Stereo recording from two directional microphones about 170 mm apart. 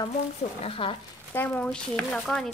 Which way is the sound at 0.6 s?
30° left (ahead or behind).